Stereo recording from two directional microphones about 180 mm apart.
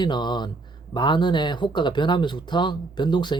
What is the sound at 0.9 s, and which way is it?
Speech, 25° left (ahead or behind).